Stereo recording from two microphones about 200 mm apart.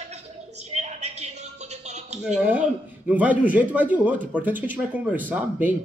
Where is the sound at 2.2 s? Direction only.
5° right (ahead or behind).